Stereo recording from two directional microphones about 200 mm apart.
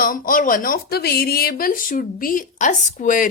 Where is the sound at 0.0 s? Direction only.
45° left (ahead or behind).